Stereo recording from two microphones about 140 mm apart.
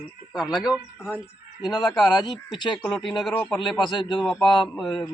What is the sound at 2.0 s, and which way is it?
Speech, 30° left (ahead or behind).